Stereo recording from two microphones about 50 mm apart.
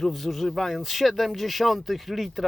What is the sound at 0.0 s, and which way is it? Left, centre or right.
Speech, centre.